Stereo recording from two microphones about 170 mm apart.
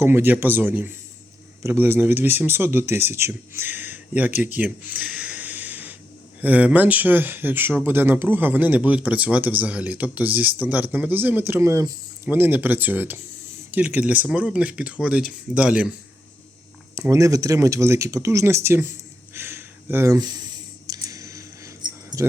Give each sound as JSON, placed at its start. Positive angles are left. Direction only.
{"t": 0.0, "sound": "speech", "side_deg": -15}
{"t": 4.5, "sound": "a sound", "side_deg": -10}
{"t": 6.4, "sound": "speech", "side_deg": -10}
{"t": 17.1, "sound": "speech", "side_deg": -20}
{"t": 19.3, "sound": "a sound", "side_deg": -15}
{"t": 20.8, "sound": "keys jangling", "side_deg": -20}